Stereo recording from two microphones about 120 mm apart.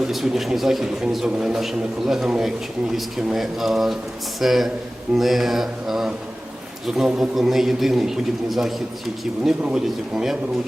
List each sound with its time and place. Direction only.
0.1 s a man's voice: centre (ahead or behind)